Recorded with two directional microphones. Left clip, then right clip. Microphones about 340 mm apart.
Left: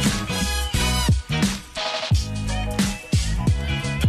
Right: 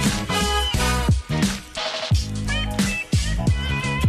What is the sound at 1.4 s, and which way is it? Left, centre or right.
Music, centre.